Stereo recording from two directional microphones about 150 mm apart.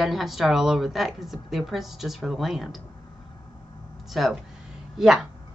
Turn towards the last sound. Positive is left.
turn(degrees=-5)  # may be behind; listen again after turning